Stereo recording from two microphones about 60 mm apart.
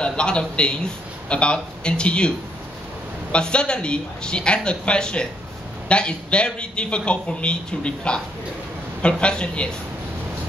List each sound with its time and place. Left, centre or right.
0.0 s a man's voice: centre